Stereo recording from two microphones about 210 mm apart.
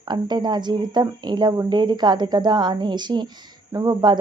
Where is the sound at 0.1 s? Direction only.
20° right (ahead or behind).